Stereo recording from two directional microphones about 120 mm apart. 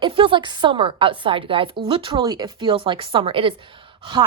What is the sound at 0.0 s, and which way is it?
A woman's voice, 45° right (ahead or behind).